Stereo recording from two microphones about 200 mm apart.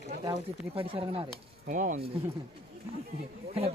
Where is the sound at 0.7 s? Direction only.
30° right (ahead or behind).